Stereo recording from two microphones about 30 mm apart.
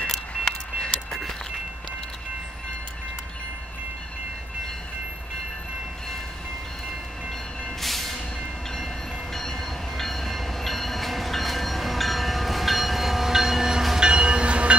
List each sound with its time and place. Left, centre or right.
0.4 s vehicle: left
1.1 s a sound: centre
7.8 s vehicle: centre
9.3 s train: centre
13.9 s train: right